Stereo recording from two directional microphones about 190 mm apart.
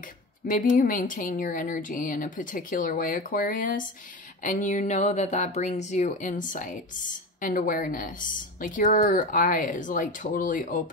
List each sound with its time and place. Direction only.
0.5 s speech: 45° left (ahead or behind)